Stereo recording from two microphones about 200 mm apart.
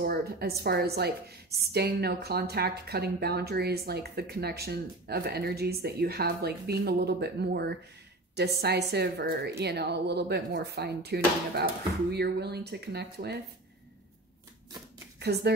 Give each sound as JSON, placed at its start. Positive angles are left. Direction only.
{"t": 0.0, "sound": "a woman's voice", "side_deg": -50}
{"t": 15.1, "sound": "speech", "side_deg": -55}